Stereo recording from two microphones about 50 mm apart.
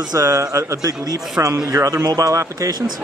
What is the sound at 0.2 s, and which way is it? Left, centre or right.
Speech, right.